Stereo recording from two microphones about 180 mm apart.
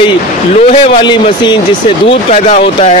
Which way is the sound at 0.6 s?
25° left (ahead or behind).